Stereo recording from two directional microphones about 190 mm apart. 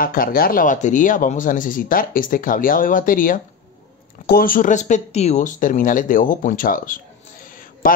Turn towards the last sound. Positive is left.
turn(degrees=45)  # may be behind; listen again after turning